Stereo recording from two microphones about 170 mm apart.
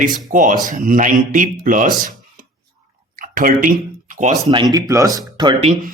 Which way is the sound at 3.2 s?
55° right (ahead or behind).